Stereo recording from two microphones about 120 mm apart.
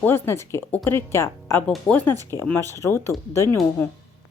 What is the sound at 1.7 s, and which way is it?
Speech, 10° left (ahead or behind).